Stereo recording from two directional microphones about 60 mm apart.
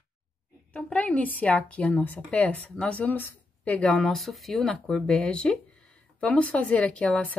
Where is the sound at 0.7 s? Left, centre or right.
Centre; by 3.3 s left.